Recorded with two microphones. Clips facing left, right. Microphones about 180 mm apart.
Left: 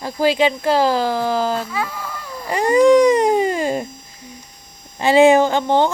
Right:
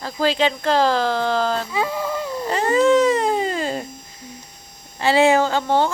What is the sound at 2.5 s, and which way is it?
Baby cry, 15° left (ahead or behind).